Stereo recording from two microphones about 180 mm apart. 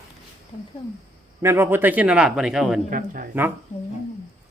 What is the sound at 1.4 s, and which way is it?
A man's voice, 15° right (ahead or behind).